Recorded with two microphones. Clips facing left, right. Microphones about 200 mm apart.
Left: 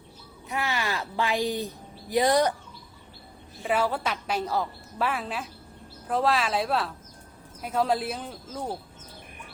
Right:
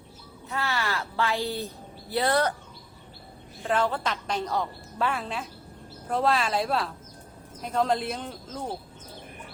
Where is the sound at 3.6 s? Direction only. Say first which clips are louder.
Even; 10° left (ahead or behind).